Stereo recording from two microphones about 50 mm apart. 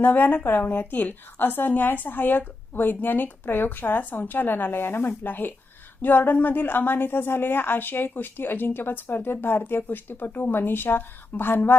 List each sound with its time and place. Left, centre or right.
0.0 s a woman's voice: left
0.4 s a woman's voice: left